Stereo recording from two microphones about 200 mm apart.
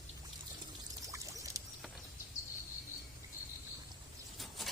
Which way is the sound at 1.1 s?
15° right (ahead or behind).